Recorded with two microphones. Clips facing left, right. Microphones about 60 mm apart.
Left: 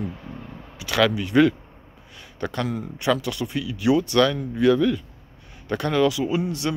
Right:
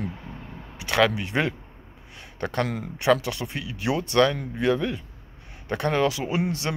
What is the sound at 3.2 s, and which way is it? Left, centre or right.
Speech, right.